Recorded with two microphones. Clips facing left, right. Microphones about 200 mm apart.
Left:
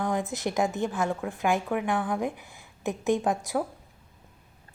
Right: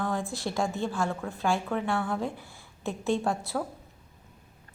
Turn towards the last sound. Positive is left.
turn(degrees=15)  # may be behind; listen again after turning